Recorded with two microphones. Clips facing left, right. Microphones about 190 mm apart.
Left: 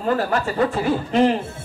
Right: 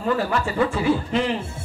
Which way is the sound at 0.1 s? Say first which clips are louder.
Left 2 dB; 45° left (ahead or behind).